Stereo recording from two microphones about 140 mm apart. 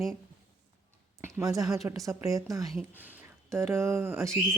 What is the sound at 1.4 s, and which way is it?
A woman's voice, 25° right (ahead or behind).